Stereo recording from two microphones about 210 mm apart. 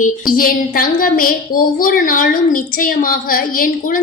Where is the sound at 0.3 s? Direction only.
40° left (ahead or behind).